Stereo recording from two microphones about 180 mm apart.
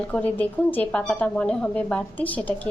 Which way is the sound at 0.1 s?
10° left (ahead or behind).